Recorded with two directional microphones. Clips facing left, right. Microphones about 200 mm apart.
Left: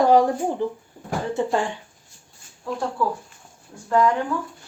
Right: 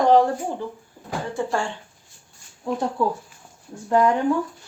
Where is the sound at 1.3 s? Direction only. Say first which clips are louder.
Left 2 dB; 20° left (ahead or behind).